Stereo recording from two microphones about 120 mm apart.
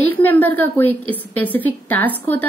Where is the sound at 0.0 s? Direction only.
15° left (ahead or behind).